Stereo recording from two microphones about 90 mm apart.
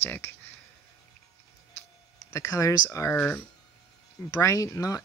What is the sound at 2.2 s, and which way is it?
Speech, 35° left (ahead or behind).